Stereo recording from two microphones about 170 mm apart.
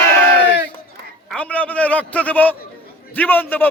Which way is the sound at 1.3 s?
10° left (ahead or behind).